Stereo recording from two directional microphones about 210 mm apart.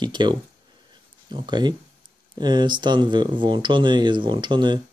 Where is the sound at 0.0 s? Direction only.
20° right (ahead or behind).